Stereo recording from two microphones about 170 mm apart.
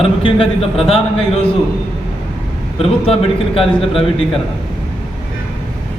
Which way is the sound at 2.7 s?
35° left (ahead or behind).